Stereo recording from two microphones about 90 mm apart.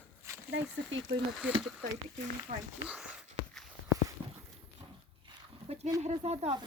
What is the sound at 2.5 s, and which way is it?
Speech, 90° right.